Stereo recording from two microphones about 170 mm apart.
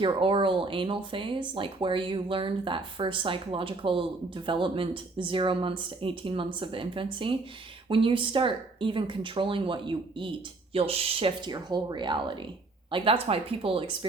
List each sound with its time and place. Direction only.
0.0 s speech: 30° right (ahead or behind)